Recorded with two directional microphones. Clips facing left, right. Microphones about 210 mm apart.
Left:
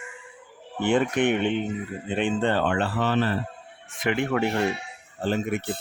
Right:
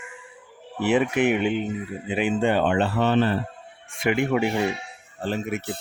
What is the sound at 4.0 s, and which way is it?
Speech, 10° right (ahead or behind).